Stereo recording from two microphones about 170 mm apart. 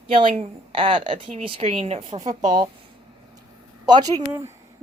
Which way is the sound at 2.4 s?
25° right (ahead or behind).